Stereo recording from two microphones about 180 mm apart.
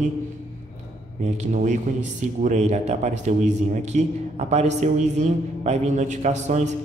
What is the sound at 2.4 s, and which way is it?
A man's voice, 40° right (ahead or behind).